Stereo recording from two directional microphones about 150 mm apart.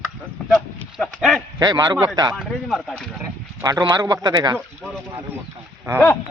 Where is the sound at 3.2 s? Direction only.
25° right (ahead or behind).